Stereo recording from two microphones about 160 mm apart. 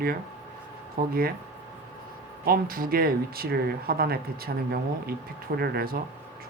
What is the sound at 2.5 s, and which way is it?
Speech, 65° right (ahead or behind).